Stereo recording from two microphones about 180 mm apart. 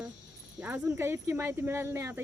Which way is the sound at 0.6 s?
10° right (ahead or behind).